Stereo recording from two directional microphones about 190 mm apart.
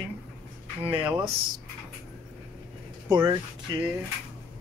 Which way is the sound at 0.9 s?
10° right (ahead or behind).